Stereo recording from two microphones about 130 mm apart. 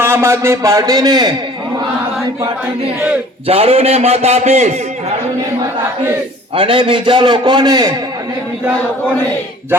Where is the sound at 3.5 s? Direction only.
50° right (ahead or behind).